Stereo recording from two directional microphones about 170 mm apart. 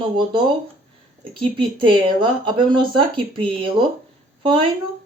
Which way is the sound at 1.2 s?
30° right (ahead or behind).